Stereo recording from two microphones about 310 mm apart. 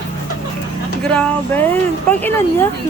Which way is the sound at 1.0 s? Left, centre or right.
Centre.